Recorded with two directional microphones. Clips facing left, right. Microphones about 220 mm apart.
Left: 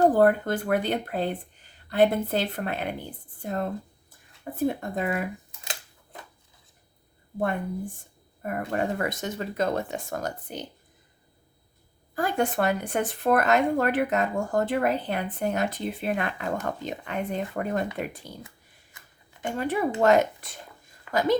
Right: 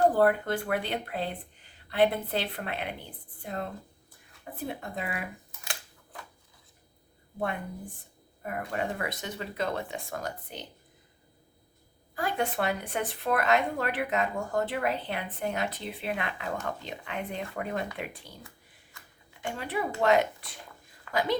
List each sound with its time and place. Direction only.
0.0 s speech: 45° left (ahead or behind)
8.4 s speech: 45° left (ahead or behind)
12.1 s speech: 45° left (ahead or behind)
19.4 s speech: 45° left (ahead or behind)